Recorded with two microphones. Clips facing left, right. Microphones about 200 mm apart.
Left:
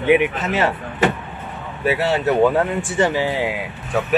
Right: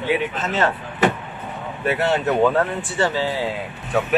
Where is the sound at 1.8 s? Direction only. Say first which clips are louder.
Left 2 dB; 5° left (ahead or behind).